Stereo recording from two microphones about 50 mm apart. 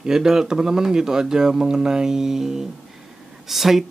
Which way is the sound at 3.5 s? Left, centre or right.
Centre.